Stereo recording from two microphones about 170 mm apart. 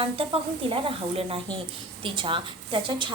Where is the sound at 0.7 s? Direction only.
35° right (ahead or behind).